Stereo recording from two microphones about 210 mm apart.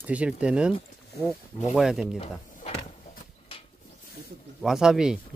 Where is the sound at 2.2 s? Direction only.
30° left (ahead or behind).